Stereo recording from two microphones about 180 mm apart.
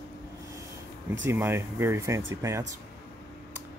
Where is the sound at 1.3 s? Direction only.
15° right (ahead or behind).